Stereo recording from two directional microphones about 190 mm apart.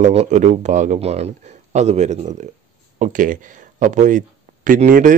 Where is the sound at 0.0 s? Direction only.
35° right (ahead or behind).